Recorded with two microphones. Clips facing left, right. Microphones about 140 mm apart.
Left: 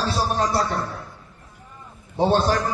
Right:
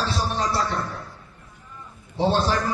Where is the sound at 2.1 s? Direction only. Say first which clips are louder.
Left 2 dB; 50° left (ahead or behind).